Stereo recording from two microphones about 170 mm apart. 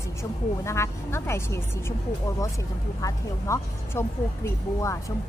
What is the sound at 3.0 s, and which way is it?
Speech, 20° left (ahead or behind).